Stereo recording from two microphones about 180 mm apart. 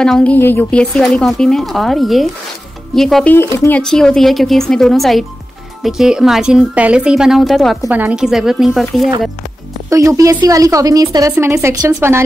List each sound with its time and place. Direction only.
0.0 s speech: 5° left (ahead or behind)
3.5 s speech: 15° left (ahead or behind)
3.8 s speech: 5° left (ahead or behind)
9.8 s speech: 15° right (ahead or behind)